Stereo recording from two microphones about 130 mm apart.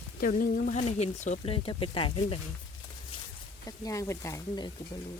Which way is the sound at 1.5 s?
40° left (ahead or behind).